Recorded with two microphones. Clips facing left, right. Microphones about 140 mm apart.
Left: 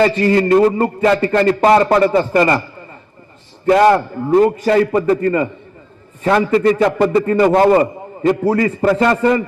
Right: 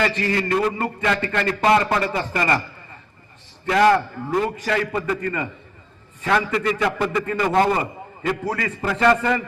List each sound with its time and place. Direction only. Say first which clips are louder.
0.0 s a man's voice: left 9 dB; 35° left (ahead or behind)
3.7 s a man's voice: left 6 dB; 35° left (ahead or behind)